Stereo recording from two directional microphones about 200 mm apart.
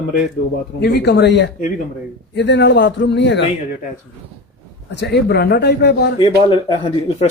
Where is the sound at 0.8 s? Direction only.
55° left (ahead or behind).